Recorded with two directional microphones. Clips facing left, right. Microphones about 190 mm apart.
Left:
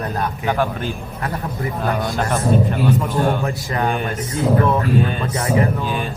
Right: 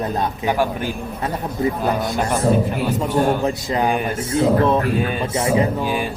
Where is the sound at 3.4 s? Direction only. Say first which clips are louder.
Right 2 dB; 20° right (ahead or behind).